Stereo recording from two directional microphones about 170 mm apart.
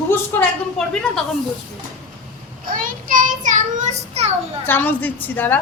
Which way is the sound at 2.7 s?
50° right (ahead or behind).